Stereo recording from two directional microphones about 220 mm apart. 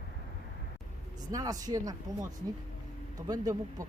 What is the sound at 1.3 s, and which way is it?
Speech, 15° right (ahead or behind).